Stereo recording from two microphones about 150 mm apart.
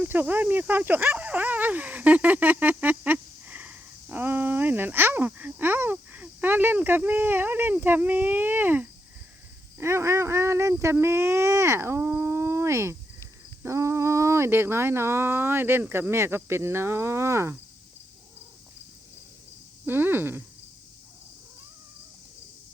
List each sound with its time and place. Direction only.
0.0 s speech: 10° right (ahead or behind)
19.8 s speech: 15° right (ahead or behind)